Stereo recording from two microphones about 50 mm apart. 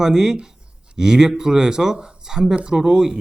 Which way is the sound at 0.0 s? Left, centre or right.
Centre.